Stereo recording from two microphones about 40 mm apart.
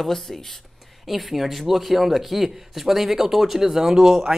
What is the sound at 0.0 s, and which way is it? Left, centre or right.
Speech, centre.